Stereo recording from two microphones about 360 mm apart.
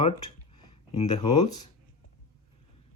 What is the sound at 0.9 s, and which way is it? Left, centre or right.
Speech, centre.